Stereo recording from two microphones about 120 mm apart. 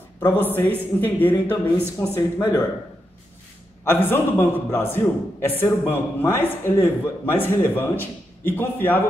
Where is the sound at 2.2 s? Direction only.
30° left (ahead or behind).